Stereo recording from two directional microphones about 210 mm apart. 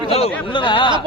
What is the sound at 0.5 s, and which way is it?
Speech, 25° left (ahead or behind).